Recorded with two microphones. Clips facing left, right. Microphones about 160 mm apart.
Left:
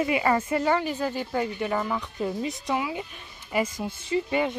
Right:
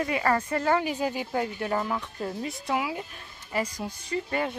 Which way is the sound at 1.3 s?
Centre (ahead or behind).